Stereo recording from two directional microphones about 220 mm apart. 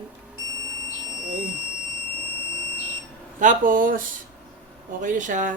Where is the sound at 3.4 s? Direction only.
35° right (ahead or behind).